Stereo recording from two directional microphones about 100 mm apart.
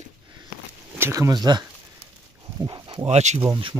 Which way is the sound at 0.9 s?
25° right (ahead or behind).